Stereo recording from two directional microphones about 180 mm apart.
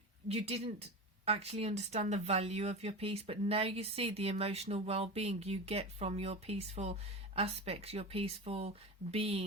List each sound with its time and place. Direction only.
0.3 s speech: 35° right (ahead or behind)